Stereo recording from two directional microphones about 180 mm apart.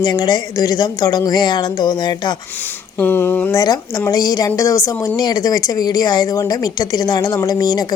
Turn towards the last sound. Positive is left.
turn(degrees=20)  # may be behind; listen again after turning